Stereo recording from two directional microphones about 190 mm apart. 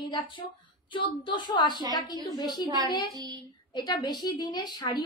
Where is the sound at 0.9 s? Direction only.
25° left (ahead or behind).